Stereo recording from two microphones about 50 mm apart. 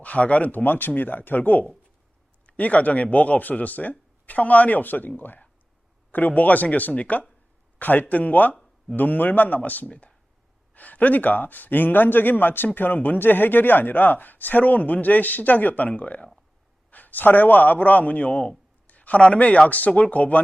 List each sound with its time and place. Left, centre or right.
0.0 s a man's voice: left
8.5 s a sound: centre
9.0 s a man's voice: left